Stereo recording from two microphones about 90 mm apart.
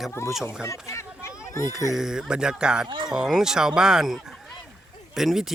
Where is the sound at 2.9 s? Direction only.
60° right (ahead or behind).